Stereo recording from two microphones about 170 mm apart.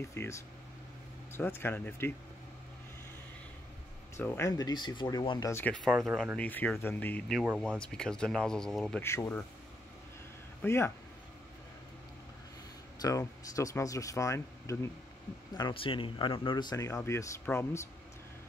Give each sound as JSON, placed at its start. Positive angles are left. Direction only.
{"t": 0.1, "sound": "speech", "side_deg": 15}
{"t": 4.2, "sound": "speech", "side_deg": 15}
{"t": 5.5, "sound": "speech", "side_deg": 10}
{"t": 9.0, "sound": "speech", "side_deg": 15}
{"t": 10.6, "sound": "speech", "side_deg": 15}
{"t": 13.0, "sound": "speech", "side_deg": 20}
{"t": 15.5, "sound": "speech", "side_deg": 30}